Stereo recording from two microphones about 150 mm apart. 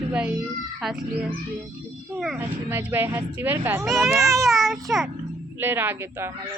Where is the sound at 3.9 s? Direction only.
Centre (ahead or behind).